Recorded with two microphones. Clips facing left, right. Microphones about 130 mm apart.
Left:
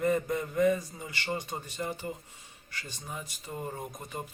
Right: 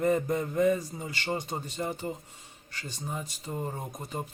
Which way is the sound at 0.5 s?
25° right (ahead or behind).